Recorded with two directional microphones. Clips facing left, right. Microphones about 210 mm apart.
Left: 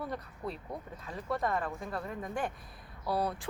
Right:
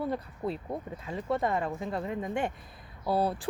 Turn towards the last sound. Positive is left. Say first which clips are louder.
# right 5 dB
turn(degrees=-30)  # may be behind; listen again after turning